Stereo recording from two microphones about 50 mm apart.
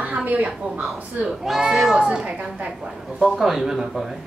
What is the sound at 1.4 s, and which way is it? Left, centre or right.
Speech, centre.